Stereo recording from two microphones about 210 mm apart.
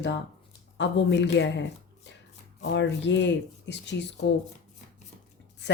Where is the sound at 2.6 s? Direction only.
60° left (ahead or behind).